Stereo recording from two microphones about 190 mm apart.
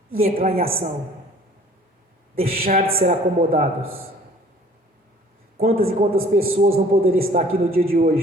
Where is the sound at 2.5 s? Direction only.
50° right (ahead or behind).